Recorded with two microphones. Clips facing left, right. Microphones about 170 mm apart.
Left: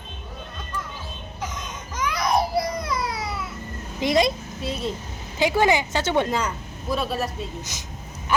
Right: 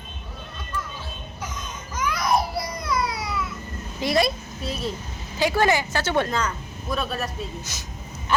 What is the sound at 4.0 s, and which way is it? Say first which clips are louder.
Speech: left 2 dB; 20° left (ahead or behind).